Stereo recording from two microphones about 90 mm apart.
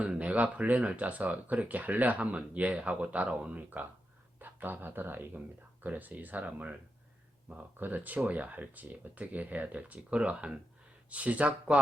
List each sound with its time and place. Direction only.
0.0 s speech: 15° right (ahead or behind)